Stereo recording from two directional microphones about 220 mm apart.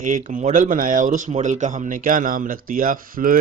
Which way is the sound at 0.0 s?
35° right (ahead or behind).